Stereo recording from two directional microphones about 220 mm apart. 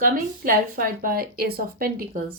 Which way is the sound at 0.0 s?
40° right (ahead or behind).